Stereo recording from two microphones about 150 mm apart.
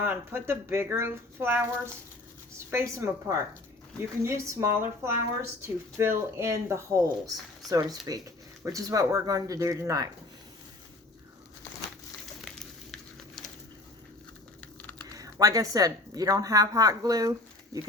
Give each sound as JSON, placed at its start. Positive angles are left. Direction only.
{"t": 0.0, "sound": "speech", "side_deg": -15}
{"t": 14.6, "sound": "typing", "side_deg": 10}
{"t": 15.0, "sound": "speech", "side_deg": -25}